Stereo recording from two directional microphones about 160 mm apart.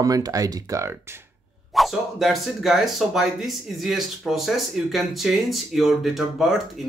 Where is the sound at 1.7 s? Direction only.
Centre (ahead or behind).